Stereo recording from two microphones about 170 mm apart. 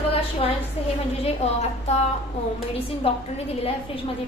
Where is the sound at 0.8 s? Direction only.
35° left (ahead or behind).